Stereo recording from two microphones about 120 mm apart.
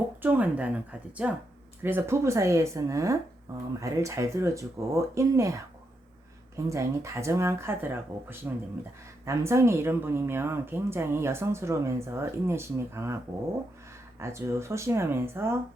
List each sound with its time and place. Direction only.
0.2 s speech: 15° right (ahead or behind)
6.7 s speech: 25° right (ahead or behind)
14.2 s speech: 25° right (ahead or behind)